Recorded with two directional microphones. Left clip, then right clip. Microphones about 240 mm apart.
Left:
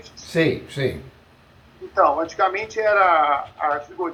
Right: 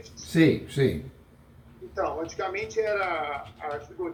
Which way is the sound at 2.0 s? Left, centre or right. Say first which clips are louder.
Left 12 dB; left.